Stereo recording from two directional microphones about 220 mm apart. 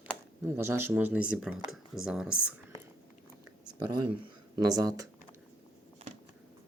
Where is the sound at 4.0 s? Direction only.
15° right (ahead or behind).